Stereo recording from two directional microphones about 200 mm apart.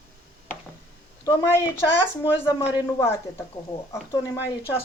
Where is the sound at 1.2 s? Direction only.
15° left (ahead or behind).